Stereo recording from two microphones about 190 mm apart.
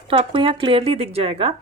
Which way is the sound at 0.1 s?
25° right (ahead or behind).